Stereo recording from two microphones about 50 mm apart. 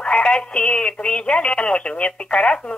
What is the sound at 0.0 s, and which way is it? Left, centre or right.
Speech, left.